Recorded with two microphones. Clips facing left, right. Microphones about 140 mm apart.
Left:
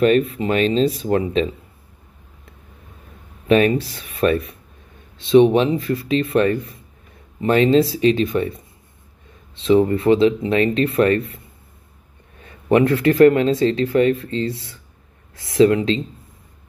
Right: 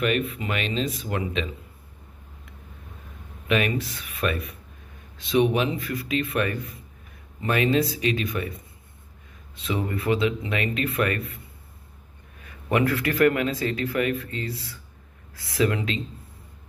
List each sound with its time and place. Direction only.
0.3 s speech: 30° left (ahead or behind)
3.4 s speech: 30° left (ahead or behind)
9.6 s speech: 30° left (ahead or behind)